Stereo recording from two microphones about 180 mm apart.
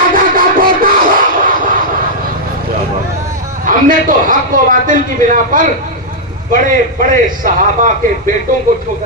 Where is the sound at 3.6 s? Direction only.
50° right (ahead or behind).